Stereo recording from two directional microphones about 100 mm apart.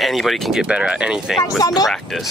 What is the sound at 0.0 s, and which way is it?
Speech, centre (ahead or behind).